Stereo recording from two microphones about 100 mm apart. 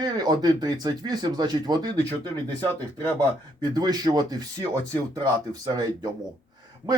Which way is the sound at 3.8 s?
45° right (ahead or behind).